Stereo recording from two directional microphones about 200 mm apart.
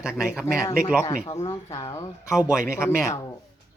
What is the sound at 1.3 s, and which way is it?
Speech, 15° left (ahead or behind).